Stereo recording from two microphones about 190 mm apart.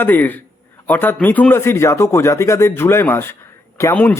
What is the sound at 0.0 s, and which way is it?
Speech, 10° left (ahead or behind).